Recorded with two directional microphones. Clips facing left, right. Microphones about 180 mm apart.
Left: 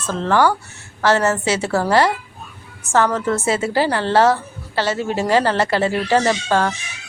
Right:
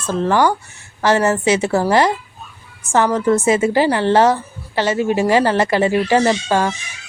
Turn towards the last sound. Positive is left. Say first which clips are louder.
# right 2 dB
turn(degrees=-15)  # may be behind; listen again after turning